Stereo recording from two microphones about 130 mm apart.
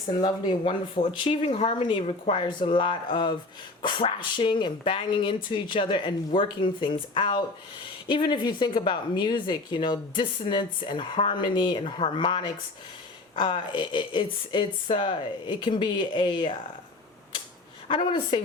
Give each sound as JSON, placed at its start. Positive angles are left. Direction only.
{"t": 0.2, "sound": "speech", "side_deg": 40}
{"t": 17.8, "sound": "speech", "side_deg": 35}